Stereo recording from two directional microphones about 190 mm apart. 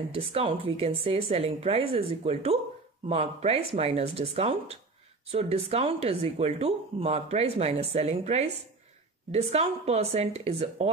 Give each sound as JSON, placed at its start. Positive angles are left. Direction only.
{"t": 0.1, "sound": "speech", "side_deg": -30}